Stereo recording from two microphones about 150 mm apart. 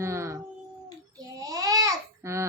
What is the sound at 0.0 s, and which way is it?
Howl, 20° right (ahead or behind).